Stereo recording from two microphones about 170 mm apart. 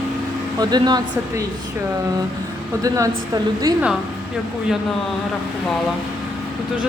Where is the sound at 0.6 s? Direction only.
25° right (ahead or behind).